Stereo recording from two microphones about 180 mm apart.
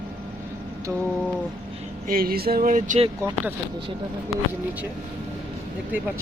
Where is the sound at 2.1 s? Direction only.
55° right (ahead or behind).